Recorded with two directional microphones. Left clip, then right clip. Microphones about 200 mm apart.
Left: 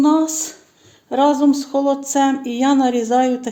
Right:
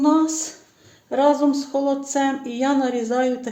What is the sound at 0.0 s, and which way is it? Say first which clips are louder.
Speech: left 3 dB; 40° left (ahead or behind).